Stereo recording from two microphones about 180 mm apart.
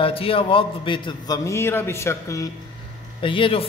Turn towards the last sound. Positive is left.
turn(degrees=30)  # may be behind; listen again after turning